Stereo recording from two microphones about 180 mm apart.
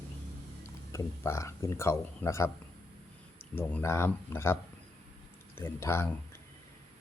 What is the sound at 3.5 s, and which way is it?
Speech, 15° left (ahead or behind).